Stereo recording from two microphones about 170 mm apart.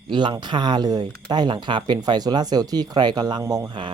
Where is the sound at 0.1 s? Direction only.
25° right (ahead or behind).